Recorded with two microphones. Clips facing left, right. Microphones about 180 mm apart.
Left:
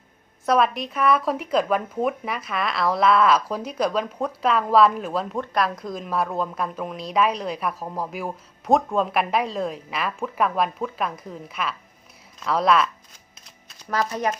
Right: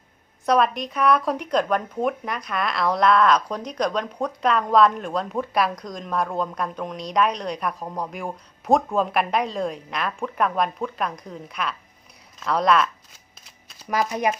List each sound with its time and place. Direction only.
0.4 s speech: centre (ahead or behind)
13.9 s speech: 10° right (ahead or behind)